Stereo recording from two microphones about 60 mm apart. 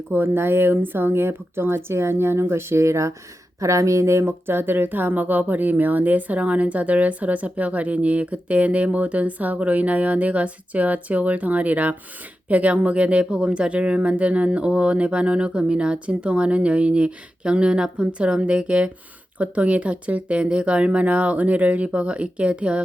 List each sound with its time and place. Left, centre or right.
0.1 s speech: right; by 22.8 s centre